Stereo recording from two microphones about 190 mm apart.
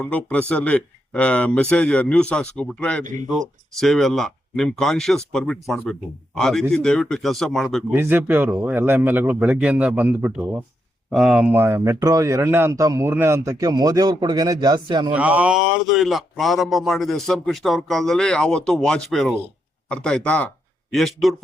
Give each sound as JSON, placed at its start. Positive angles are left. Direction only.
{"t": 0.0, "sound": "speech", "side_deg": 5}
{"t": 3.0, "sound": "a man's voice", "side_deg": -40}
{"t": 3.8, "sound": "speech", "side_deg": 0}
{"t": 7.9, "sound": "speech", "side_deg": -10}
{"t": 15.1, "sound": "speech", "side_deg": -5}